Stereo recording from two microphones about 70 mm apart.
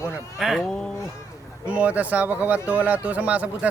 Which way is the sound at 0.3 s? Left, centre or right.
Centre.